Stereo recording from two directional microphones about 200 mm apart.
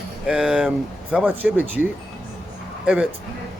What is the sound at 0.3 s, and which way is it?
Speech, 5° right (ahead or behind).